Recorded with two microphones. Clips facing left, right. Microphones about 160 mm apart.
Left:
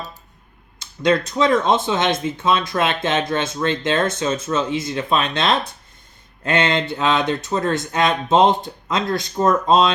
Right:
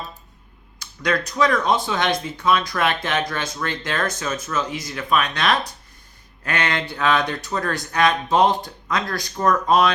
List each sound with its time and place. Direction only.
0.8 s speech: 25° left (ahead or behind)